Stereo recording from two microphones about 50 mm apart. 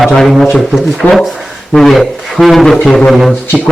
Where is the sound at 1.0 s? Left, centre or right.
Left.